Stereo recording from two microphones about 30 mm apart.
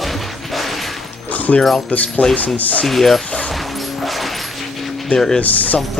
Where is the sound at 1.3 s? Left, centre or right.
Left.